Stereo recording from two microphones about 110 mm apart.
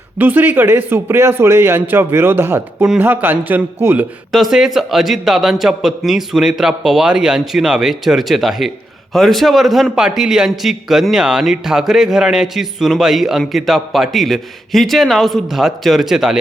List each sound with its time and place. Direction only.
0.2 s a man's voice: 15° right (ahead or behind)
4.3 s a man's voice: centre (ahead or behind)